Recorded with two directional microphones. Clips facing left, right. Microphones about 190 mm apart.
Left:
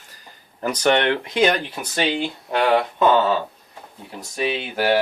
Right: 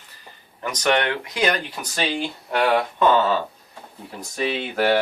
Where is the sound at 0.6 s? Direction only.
30° left (ahead or behind).